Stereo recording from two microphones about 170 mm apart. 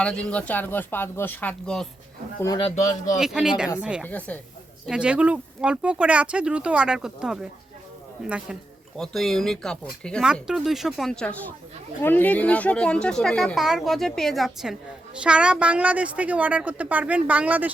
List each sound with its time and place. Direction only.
0.0 s speech: 5° left (ahead or behind)
2.4 s a man's voice: 20° left (ahead or behind)
3.2 s speech: 5° right (ahead or behind)
4.0 s speech: 10° left (ahead or behind)
4.9 s speech: 5° right (ahead or behind)